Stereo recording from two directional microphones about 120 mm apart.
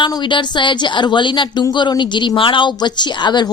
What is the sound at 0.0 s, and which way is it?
A woman's voice, 40° left (ahead or behind).